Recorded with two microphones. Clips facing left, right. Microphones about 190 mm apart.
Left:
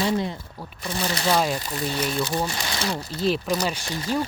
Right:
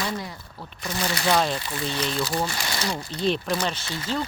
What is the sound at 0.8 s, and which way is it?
Speech, centre (ahead or behind).